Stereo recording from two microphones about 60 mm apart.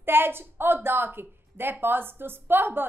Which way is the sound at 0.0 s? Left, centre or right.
Right.